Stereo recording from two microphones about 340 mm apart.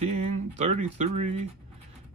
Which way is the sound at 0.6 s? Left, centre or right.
Centre.